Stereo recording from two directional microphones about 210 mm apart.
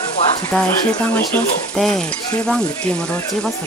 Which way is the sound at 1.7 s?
Centre (ahead or behind).